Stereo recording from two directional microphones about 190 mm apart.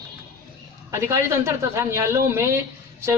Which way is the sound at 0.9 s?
15° right (ahead or behind).